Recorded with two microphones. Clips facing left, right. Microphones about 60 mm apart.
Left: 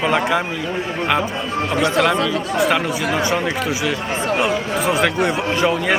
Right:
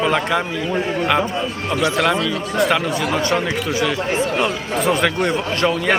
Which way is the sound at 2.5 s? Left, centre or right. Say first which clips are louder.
Right 1 dB; centre.